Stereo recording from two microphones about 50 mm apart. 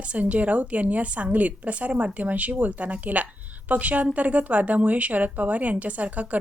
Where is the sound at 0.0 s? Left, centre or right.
Right.